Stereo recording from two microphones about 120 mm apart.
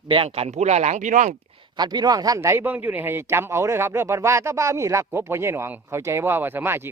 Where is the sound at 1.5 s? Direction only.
40° right (ahead or behind).